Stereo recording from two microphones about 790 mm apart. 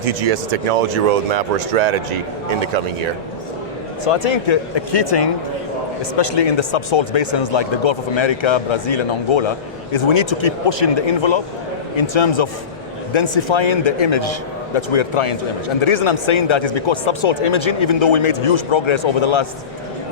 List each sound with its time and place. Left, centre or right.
0.0 s speech: right
4.0 s speech: left